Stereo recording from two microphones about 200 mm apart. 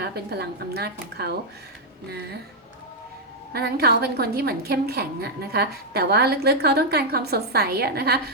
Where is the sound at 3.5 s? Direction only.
50° right (ahead or behind).